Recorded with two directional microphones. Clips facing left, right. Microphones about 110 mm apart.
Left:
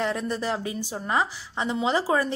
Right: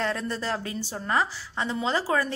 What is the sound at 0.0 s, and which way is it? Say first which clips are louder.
Speech: left 2 dB; 15° left (ahead or behind).